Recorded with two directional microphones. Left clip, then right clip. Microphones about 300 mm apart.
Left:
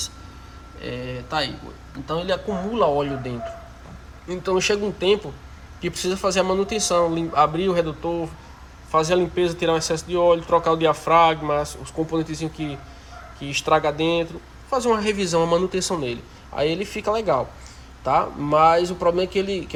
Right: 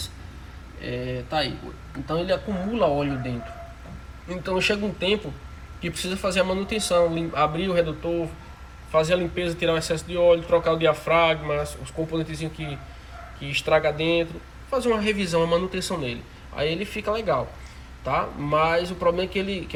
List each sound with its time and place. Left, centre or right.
0.8 s speech: centre